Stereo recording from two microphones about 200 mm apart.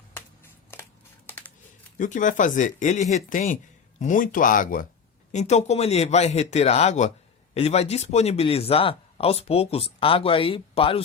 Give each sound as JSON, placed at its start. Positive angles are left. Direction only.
{"t": 0.7, "sound": "a sound", "side_deg": 10}
{"t": 1.3, "sound": "typing", "side_deg": 10}
{"t": 2.0, "sound": "speech", "side_deg": 40}